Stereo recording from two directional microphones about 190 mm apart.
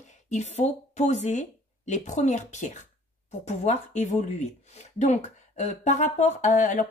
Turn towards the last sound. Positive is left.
turn(degrees=40)  # may be behind; listen again after turning